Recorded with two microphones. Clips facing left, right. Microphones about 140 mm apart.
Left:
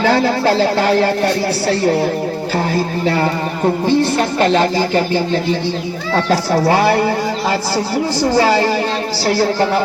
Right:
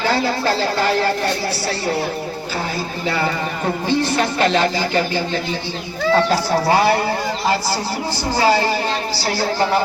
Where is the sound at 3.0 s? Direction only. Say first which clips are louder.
Left 1 dB; 45° left (ahead or behind).